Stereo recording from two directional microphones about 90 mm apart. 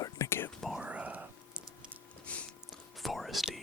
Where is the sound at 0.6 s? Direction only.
5° right (ahead or behind).